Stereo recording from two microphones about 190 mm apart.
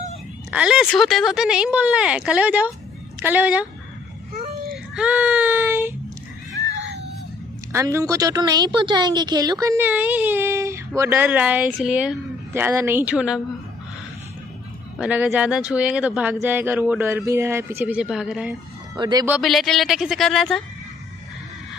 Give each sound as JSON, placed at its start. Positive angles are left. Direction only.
{"t": 0.5, "sound": "a woman's voice", "side_deg": -5}
{"t": 4.9, "sound": "child singing", "side_deg": -5}
{"t": 6.7, "sound": "a sound", "side_deg": -65}
{"t": 7.7, "sound": "a woman's voice", "side_deg": -15}
{"t": 15.0, "sound": "a woman's voice", "side_deg": -5}
{"t": 18.9, "sound": "speech", "side_deg": -20}
{"t": 19.2, "sound": "speech", "side_deg": -5}